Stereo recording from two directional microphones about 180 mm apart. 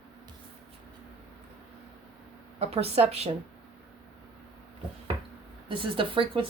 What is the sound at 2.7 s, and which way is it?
Speech, 35° right (ahead or behind).